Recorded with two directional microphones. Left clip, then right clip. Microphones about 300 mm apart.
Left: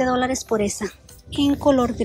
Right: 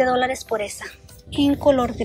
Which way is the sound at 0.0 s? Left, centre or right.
Centre.